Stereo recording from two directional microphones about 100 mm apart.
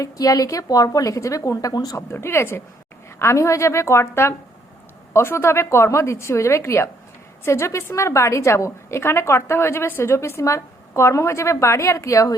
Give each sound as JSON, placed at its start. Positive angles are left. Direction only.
{"t": 0.0, "sound": "a woman's voice", "side_deg": 35}
{"t": 2.0, "sound": "a woman's voice", "side_deg": 25}